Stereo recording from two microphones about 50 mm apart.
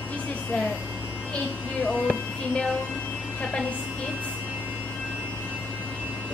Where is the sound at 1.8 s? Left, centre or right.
Centre.